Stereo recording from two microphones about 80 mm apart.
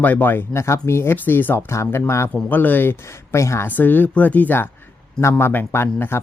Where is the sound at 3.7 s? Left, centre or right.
Left.